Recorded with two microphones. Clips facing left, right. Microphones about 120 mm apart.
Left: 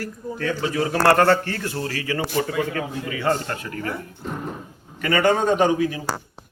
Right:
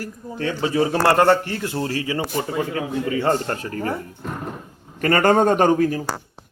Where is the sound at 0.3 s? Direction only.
25° right (ahead or behind).